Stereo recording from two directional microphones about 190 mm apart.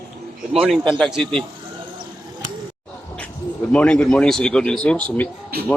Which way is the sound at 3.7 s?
5° left (ahead or behind).